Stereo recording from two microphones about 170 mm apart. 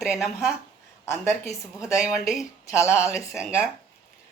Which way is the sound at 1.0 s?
15° left (ahead or behind).